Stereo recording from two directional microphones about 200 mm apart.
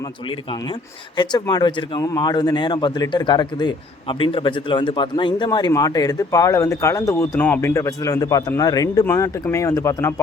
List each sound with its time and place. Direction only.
1.1 s a man's voice: 20° left (ahead or behind)